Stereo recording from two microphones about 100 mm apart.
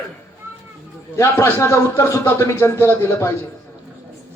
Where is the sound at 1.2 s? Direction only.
30° left (ahead or behind).